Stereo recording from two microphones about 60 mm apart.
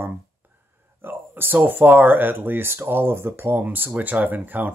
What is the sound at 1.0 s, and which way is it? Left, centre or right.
Speech, right.